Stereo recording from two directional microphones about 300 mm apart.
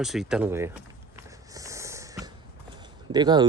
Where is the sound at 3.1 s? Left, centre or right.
Centre.